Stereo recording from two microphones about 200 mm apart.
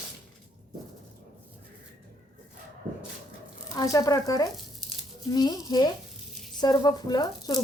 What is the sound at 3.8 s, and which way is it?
A woman's voice, 15° left (ahead or behind).